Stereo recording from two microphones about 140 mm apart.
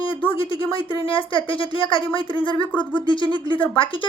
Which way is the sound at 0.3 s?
40° left (ahead or behind).